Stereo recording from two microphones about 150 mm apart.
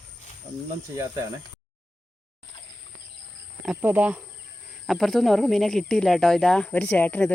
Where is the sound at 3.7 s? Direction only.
10° right (ahead or behind).